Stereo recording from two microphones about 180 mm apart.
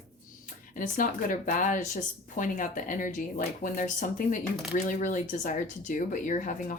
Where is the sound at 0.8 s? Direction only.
50° left (ahead or behind).